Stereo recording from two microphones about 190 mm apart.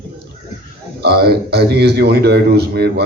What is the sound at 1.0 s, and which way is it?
A man's voice, 55° right (ahead or behind).